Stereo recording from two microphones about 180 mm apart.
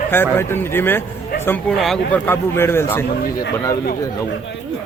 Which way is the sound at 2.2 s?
15° left (ahead or behind).